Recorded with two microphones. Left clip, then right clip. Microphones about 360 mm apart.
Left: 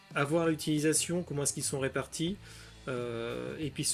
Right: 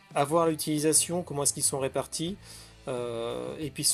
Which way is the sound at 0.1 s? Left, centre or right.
Centre.